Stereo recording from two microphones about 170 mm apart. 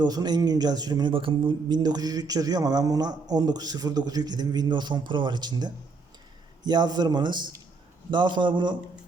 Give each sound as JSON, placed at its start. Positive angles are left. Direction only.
{"t": 0.0, "sound": "a man's voice", "side_deg": -25}